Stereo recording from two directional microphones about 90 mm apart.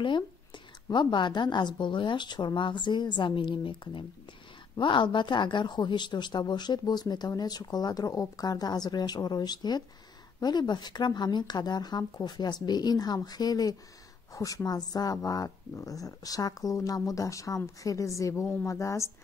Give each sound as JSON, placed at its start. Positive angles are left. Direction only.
{"t": 0.0, "sound": "a woman's voice", "side_deg": 60}